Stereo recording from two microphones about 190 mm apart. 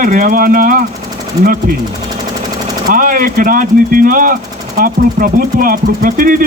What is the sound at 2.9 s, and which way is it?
Speech, 45° right (ahead or behind).